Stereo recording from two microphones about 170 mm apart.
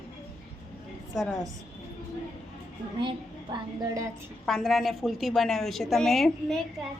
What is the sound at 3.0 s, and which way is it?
A woman's voice, 25° right (ahead or behind).